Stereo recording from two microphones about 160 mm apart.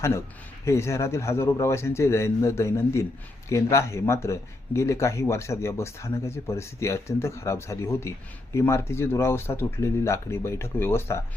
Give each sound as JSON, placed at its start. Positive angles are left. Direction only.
{"t": 0.6, "sound": "speech", "side_deg": 15}